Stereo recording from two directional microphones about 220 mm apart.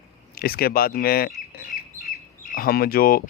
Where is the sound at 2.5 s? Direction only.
45° left (ahead or behind).